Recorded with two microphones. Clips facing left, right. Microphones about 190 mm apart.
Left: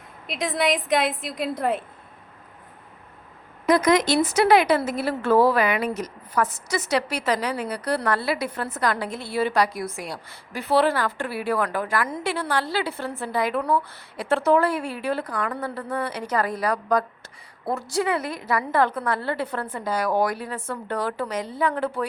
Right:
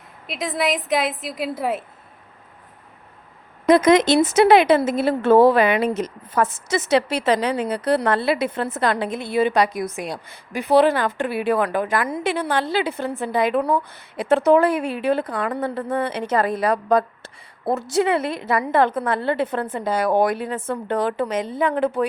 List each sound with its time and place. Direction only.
0.3 s a woman's voice: centre (ahead or behind)
3.7 s a woman's voice: 25° right (ahead or behind)